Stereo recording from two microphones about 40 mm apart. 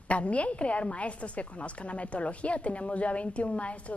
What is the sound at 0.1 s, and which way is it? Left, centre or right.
A woman's voice, left.